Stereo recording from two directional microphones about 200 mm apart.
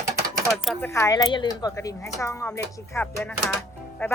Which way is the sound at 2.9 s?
5° left (ahead or behind).